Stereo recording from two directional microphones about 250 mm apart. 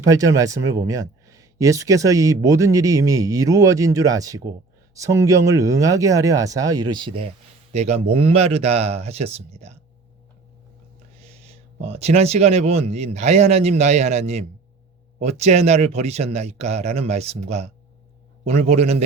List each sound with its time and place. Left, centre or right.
0.1 s speech: centre
11.2 s speech: right